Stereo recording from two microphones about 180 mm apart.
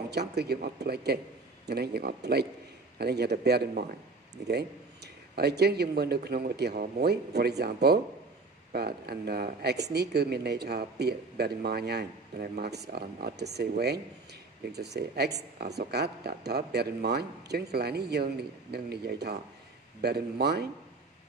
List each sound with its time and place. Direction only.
0.1 s speech: 65° right (ahead or behind)